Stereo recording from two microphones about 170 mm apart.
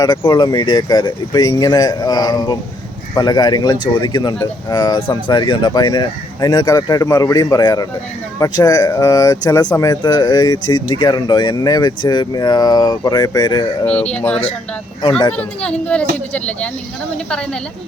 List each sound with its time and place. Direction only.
0.0 s speech: 25° left (ahead or behind)
13.8 s speech: 5° left (ahead or behind)